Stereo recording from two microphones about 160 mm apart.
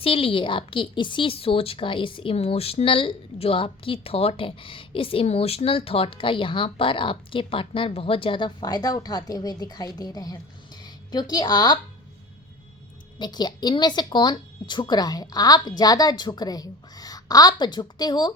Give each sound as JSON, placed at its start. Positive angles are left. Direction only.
{"t": 0.0, "sound": "a woman's voice", "side_deg": 35}
{"t": 13.1, "sound": "speech", "side_deg": 25}